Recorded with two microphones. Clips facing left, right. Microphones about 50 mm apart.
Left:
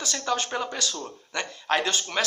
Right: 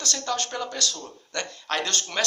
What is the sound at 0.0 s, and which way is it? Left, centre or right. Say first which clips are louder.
Speech: left 1 dB; centre.